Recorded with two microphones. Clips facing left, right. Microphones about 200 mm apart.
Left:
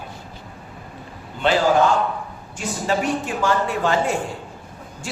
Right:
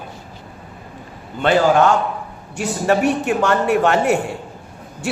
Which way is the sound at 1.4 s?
65° right (ahead or behind).